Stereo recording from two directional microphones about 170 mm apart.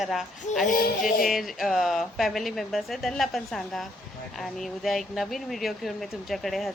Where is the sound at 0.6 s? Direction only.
55° left (ahead or behind).